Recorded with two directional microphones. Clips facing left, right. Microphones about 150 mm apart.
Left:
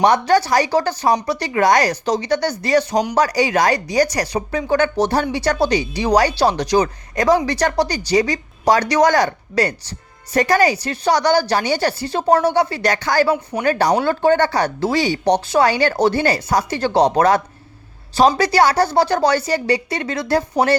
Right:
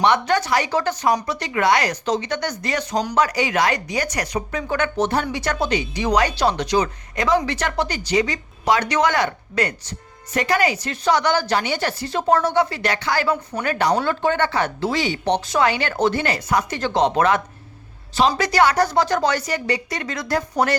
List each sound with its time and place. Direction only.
0.0 s speech: 35° left (ahead or behind)
2.9 s speech: 15° left (ahead or behind)
3.2 s speech: 35° left (ahead or behind)